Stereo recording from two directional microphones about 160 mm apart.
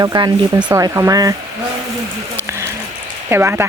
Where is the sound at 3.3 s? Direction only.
15° right (ahead or behind).